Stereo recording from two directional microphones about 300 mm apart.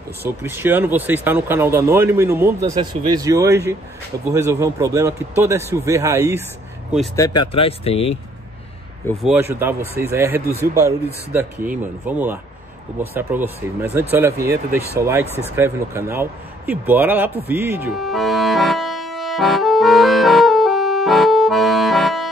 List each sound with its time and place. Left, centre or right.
0.4 s speech: centre
7.2 s speech: centre
9.0 s speech: centre
15.2 s speech: centre
15.5 s speech: centre
17.5 s accordion: centre